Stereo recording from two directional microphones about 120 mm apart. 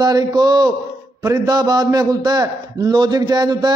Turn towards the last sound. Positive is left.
turn(degrees=-35)  # may be behind; listen again after turning